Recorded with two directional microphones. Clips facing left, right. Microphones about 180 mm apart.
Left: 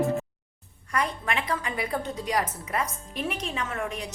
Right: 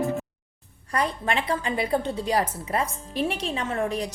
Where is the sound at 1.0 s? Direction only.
30° right (ahead or behind).